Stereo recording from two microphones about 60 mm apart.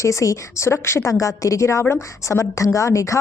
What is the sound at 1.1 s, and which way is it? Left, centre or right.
A woman's voice, left.